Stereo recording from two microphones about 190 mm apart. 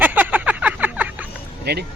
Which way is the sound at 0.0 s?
10° right (ahead or behind).